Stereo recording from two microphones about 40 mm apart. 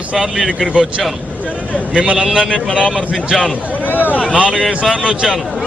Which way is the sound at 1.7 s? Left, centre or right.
Right.